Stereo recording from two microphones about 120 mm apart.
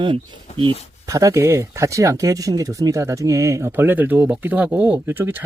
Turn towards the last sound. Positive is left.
turn(degrees=-20)  # may be behind; listen again after turning